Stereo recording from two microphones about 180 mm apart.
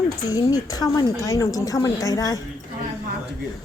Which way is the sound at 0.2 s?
20° left (ahead or behind).